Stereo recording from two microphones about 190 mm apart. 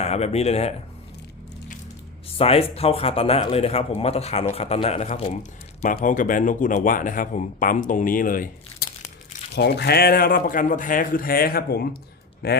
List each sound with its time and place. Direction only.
0.0 s speech: 35° left (ahead or behind)
2.4 s speech: 30° left (ahead or behind); by 8.4 s 45° left (ahead or behind)
9.6 s a man's voice: 60° left (ahead or behind)